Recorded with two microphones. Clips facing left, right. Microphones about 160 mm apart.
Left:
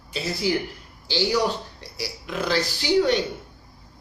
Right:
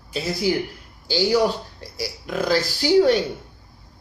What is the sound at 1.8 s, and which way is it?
Speech, 45° right (ahead or behind).